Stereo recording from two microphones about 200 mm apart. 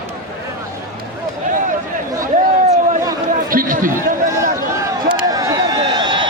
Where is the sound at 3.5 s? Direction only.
45° right (ahead or behind).